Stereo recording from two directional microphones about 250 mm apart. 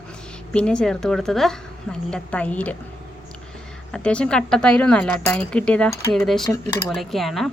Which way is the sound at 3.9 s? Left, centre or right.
Centre.